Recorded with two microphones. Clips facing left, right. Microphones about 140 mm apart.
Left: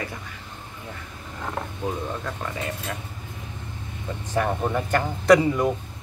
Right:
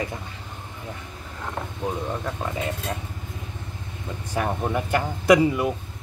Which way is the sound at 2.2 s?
20° right (ahead or behind).